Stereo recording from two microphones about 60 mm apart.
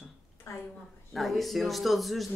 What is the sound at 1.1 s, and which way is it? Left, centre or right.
Speech, centre.